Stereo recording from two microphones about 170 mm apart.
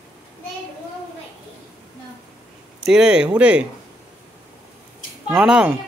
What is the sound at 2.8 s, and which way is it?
Speech, 5° right (ahead or behind).